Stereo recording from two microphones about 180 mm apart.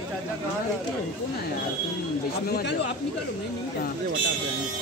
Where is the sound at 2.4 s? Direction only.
60° left (ahead or behind).